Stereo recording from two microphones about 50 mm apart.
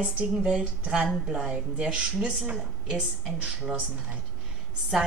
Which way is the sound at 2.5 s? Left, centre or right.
Centre.